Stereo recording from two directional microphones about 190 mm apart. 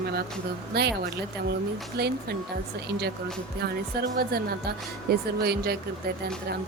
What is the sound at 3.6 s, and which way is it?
Speech, 55° right (ahead or behind).